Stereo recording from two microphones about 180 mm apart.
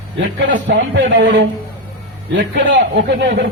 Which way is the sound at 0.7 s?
75° right (ahead or behind).